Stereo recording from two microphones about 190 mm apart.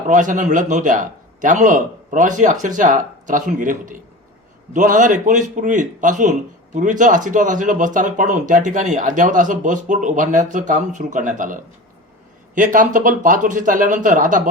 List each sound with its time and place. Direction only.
0.1 s speech: 40° right (ahead or behind)